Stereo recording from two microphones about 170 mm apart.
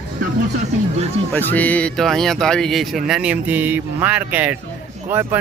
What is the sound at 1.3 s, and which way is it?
Speech, 10° left (ahead or behind).